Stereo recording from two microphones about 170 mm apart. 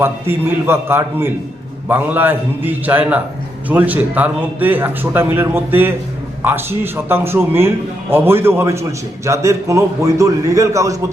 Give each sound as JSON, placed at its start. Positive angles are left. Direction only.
{"t": 0.0, "sound": "a man's voice", "side_deg": -15}